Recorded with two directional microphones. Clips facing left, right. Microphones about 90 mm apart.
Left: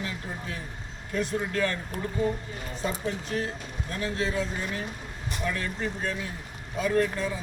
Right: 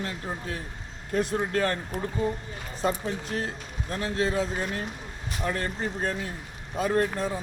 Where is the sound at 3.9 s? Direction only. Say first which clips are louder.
Right 3 dB; 50° right (ahead or behind).